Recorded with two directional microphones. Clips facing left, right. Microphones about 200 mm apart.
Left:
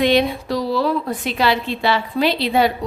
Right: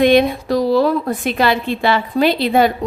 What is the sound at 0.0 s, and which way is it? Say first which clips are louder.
A woman's voice: right 4 dB; 50° right (ahead or behind).